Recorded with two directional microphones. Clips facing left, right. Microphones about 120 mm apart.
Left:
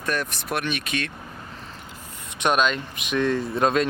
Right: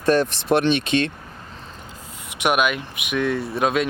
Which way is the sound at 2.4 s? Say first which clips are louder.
Right 1 dB; 10° right (ahead or behind).